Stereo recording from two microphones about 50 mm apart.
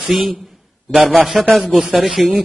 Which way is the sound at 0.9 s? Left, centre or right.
Right.